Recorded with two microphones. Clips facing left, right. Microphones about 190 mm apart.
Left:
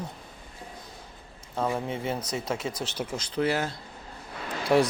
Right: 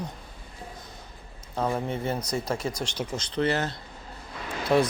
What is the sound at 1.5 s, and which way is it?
A man's voice, 5° left (ahead or behind).